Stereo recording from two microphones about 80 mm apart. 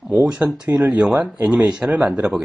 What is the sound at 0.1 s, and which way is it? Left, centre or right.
Speech, centre.